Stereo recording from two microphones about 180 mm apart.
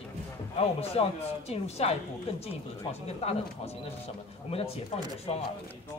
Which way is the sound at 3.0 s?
35° left (ahead or behind).